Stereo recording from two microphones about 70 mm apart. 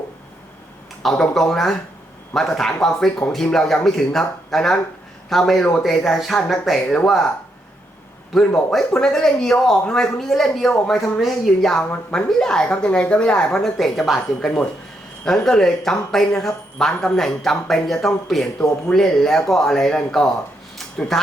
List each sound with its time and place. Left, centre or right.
1.0 s speech: centre
8.3 s speech: centre